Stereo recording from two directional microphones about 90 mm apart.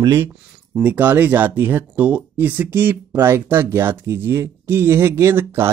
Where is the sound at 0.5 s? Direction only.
15° right (ahead or behind).